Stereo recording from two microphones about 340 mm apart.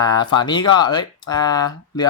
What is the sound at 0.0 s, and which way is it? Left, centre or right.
Speech, centre.